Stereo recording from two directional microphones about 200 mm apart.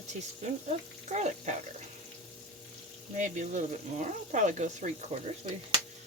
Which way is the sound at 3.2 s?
35° right (ahead or behind).